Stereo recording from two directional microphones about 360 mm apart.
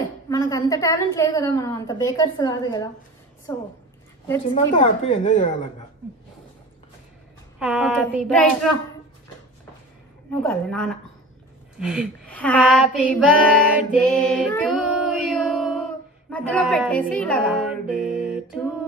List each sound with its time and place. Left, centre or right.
0.3 s a woman's voice: centre
7.5 s speech: centre
10.4 s speech: centre
11.8 s female singing: centre
16.3 s speech: centre
18.0 s music: centre